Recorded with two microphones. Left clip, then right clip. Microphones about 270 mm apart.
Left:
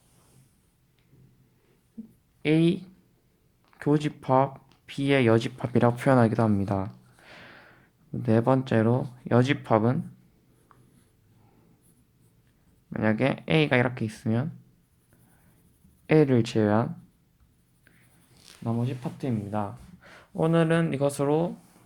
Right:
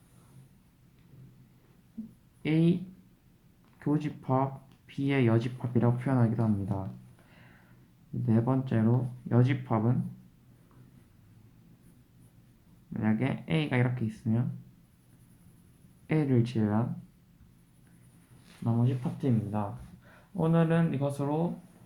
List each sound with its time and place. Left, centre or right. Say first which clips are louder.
2.4 s speech: left 5 dB; left
3.8 s speech: left 6 dB; left
7.3 s a sound: left 15 dB; left
8.2 s speech: left 7 dB; left
12.9 s speech: left 7 dB; left
16.0 s speech: left 8 dB; left
18.6 s speech: left 1 dB; left